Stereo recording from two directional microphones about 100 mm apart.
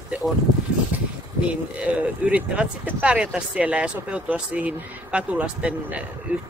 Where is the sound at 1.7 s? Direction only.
10° right (ahead or behind).